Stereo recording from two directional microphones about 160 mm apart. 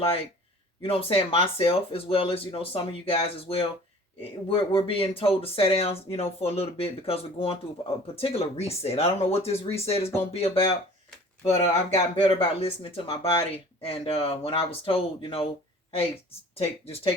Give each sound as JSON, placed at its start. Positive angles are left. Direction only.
{"t": 0.8, "sound": "speech", "side_deg": 35}
{"t": 16.6, "sound": "speech", "side_deg": 40}